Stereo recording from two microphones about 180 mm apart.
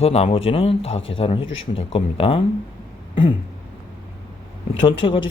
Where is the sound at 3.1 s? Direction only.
25° left (ahead or behind).